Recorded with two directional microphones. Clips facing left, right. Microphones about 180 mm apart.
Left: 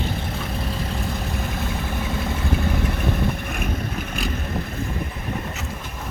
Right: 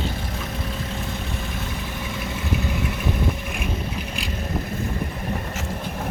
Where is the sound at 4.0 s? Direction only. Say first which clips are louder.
Left 3 dB; 45° left (ahead or behind).